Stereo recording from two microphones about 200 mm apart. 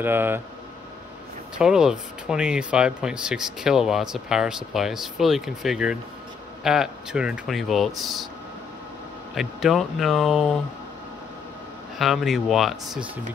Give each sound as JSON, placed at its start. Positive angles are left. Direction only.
{"t": 0.0, "sound": "speech", "side_deg": -10}
{"t": 1.6, "sound": "speech", "side_deg": -5}
{"t": 9.3, "sound": "speech", "side_deg": 0}
{"t": 12.0, "sound": "speech", "side_deg": 0}